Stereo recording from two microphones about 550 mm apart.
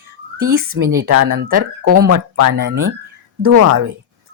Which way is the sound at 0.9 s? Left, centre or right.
Centre.